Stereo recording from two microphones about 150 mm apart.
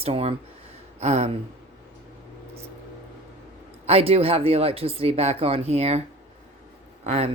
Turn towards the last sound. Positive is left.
turn(degrees=-45)  # may be behind; listen again after turning